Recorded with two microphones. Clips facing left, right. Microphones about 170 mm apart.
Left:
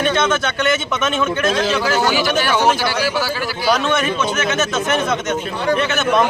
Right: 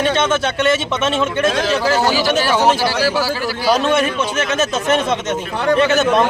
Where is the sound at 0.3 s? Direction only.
30° right (ahead or behind).